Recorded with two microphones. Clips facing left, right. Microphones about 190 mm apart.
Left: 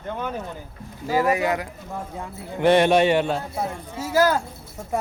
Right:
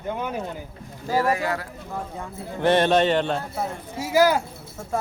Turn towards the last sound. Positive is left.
turn(degrees=-10)  # may be behind; listen again after turning